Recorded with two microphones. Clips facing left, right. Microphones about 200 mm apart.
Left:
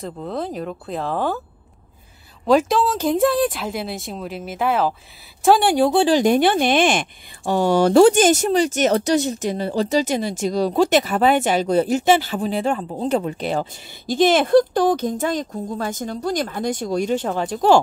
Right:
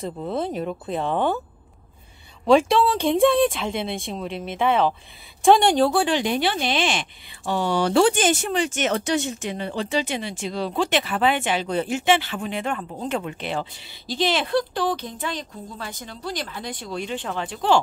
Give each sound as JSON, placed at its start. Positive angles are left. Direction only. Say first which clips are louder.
{"t": 0.0, "sound": "speech", "louder": "even", "side_deg": 0}
{"t": 2.4, "sound": "speech", "louder": "even", "side_deg": 0}
{"t": 6.0, "sound": "speech", "louder": "left 7 dB", "side_deg": 40}